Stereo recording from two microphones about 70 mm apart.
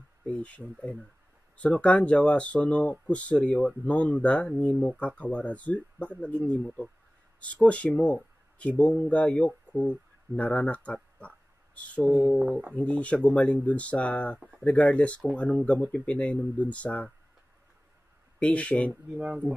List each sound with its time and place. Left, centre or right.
0.2 s a sound: centre
1.6 s speech: centre
7.6 s speech: centre
9.7 s a sound: centre
12.1 s speech: left
18.4 s speech: centre
18.9 s speech: centre